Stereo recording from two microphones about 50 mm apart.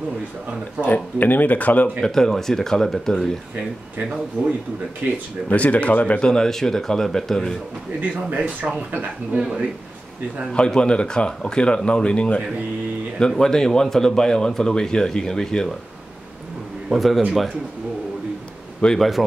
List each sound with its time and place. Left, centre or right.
0.8 s speech: left
2.0 s speech: centre
4.4 s speech: centre
5.5 s speech: left
6.2 s speech: centre
8.0 s speech: right
10.5 s speech: centre
13.4 s speech: centre
16.9 s speech: centre
18.9 s speech: centre